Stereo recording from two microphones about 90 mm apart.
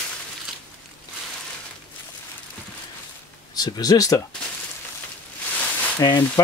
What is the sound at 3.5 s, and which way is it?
Speech, 45° left (ahead or behind).